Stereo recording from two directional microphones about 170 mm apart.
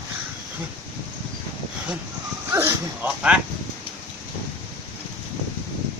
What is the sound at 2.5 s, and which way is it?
Dog, 10° right (ahead or behind).